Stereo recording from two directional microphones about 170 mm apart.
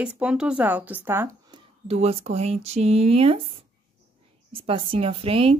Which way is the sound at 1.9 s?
35° right (ahead or behind).